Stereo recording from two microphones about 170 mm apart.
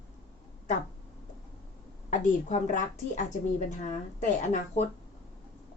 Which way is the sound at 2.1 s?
45° left (ahead or behind).